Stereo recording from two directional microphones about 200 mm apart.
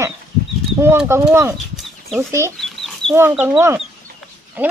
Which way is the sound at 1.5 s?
Centre (ahead or behind).